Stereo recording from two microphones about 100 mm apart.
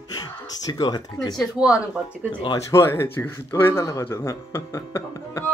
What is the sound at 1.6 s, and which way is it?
Speech, 10° right (ahead or behind).